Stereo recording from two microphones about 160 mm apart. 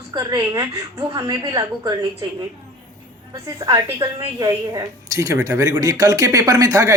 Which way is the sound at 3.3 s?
20° right (ahead or behind).